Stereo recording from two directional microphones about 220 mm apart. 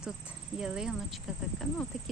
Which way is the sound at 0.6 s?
5° right (ahead or behind).